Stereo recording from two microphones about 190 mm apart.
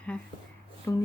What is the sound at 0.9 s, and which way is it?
Speech, 15° left (ahead or behind).